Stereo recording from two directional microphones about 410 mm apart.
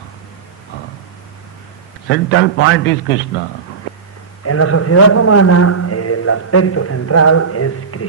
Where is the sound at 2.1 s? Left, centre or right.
Left.